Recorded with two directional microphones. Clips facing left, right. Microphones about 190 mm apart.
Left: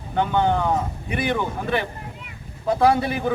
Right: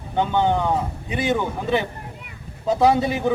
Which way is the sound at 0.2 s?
20° right (ahead or behind).